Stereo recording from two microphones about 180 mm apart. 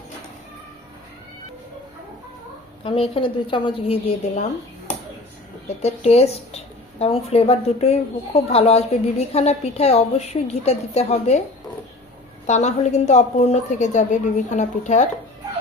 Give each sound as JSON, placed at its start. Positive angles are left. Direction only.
{"t": 2.8, "sound": "a woman's voice", "side_deg": 30}
{"t": 5.6, "sound": "a woman's voice", "side_deg": 35}
{"t": 12.5, "sound": "a woman's voice", "side_deg": 40}